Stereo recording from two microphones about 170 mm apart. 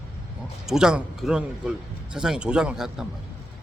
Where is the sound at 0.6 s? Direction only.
5° right (ahead or behind).